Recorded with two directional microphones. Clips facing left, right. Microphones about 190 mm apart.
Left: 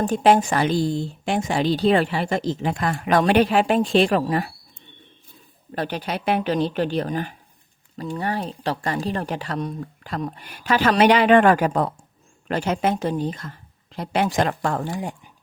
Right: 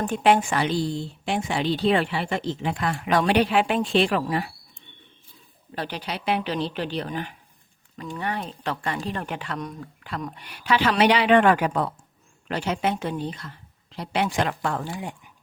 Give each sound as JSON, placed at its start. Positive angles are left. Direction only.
{"t": 0.0, "sound": "speech", "side_deg": 40}
{"t": 5.7, "sound": "a woman's voice", "side_deg": 45}